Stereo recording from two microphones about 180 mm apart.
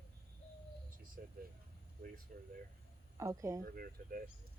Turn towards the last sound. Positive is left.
turn(degrees=-55)  # may be behind; listen again after turning